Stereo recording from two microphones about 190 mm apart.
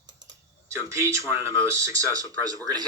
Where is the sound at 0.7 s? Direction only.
15° right (ahead or behind).